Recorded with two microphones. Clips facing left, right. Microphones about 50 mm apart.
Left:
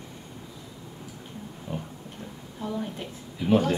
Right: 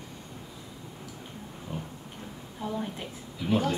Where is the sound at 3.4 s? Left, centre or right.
Centre.